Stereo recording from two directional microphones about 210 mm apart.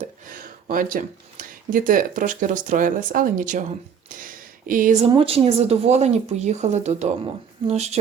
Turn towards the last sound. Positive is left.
turn(degrees=-30)  # may be behind; listen again after turning